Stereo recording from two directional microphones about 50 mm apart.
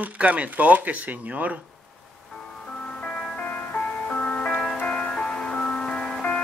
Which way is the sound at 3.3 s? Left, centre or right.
Left.